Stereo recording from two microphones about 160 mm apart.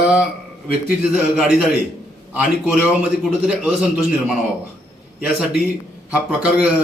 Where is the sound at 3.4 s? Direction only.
5° right (ahead or behind).